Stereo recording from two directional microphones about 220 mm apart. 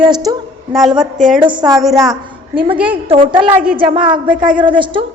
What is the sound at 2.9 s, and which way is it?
Speech, 25° right (ahead or behind).